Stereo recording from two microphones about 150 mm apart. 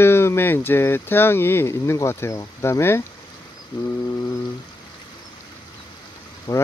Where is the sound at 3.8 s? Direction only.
25° left (ahead or behind).